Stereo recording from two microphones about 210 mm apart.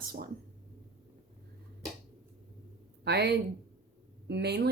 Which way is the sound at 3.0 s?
50° right (ahead or behind).